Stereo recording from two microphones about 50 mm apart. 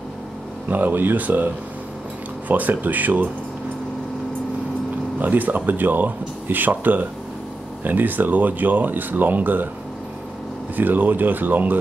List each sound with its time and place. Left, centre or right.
0.7 s speech: right
5.2 s speech: right
10.8 s speech: right